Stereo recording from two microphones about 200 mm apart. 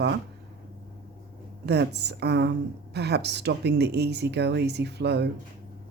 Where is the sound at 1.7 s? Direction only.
55° right (ahead or behind).